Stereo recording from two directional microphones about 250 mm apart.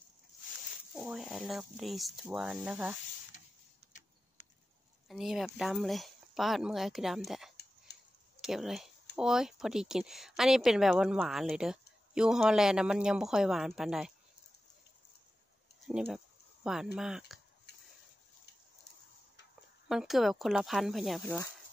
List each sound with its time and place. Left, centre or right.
0.9 s speech: centre
5.0 s speech: centre
7.9 s a sound: left
8.4 s speech: centre
15.9 s speech: centre
17.7 s a sound: left
19.9 s speech: centre